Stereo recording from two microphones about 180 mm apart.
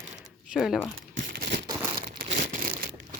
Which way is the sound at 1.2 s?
60° right (ahead or behind).